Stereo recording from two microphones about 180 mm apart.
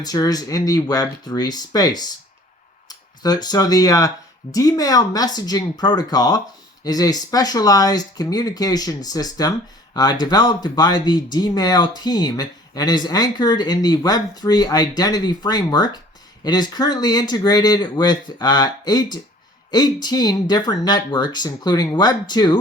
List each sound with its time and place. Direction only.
0.0 s speech: 20° left (ahead or behind)
3.2 s speech: 20° left (ahead or behind)